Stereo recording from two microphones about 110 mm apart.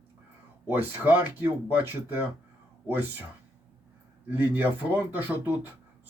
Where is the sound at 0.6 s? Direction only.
20° right (ahead or behind).